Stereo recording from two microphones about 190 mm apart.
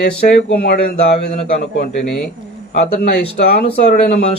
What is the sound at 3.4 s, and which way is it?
Speech, 55° left (ahead or behind).